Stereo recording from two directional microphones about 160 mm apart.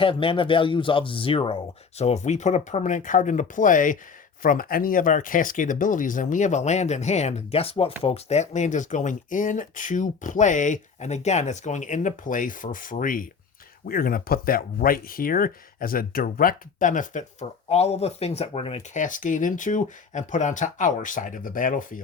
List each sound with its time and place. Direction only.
0.0 s speech: 35° left (ahead or behind); by 17.2 s 55° left (ahead or behind)
17.7 s speech: 40° left (ahead or behind); by 22.0 s 55° left (ahead or behind)